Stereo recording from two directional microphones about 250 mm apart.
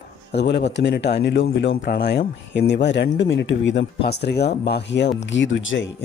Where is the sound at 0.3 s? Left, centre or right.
Left.